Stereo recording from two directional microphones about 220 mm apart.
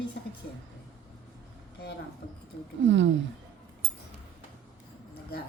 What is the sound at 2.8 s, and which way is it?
Speech, 55° right (ahead or behind).